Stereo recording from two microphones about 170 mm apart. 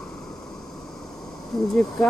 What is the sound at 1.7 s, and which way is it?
Speech, 5° left (ahead or behind).